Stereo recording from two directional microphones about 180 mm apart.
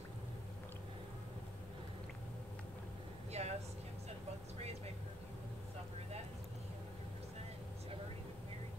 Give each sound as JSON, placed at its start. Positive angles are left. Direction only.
{"t": 3.3, "sound": "air conditioning", "side_deg": -35}
{"t": 4.6, "sound": "vehicle", "side_deg": -35}